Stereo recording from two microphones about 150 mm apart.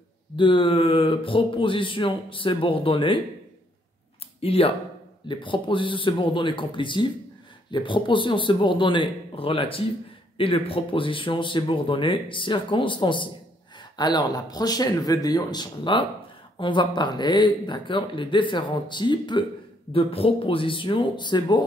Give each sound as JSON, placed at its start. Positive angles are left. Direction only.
{"t": 0.4, "sound": "speech", "side_deg": 35}
{"t": 4.4, "sound": "speech", "side_deg": 40}